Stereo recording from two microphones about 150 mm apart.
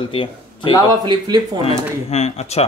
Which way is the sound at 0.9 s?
25° right (ahead or behind).